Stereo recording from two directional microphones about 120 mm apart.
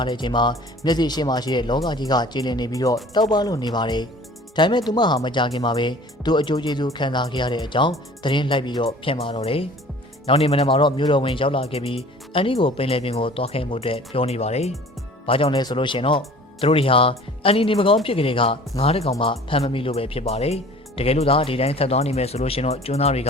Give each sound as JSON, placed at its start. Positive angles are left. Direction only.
{"t": 0.0, "sound": "speech", "side_deg": 40}
{"t": 8.9, "sound": "speech", "side_deg": 55}
{"t": 15.3, "sound": "speech", "side_deg": 50}
{"t": 15.5, "sound": "speech", "side_deg": 40}